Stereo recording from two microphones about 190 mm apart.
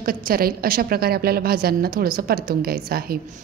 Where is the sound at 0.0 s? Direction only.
50° right (ahead or behind).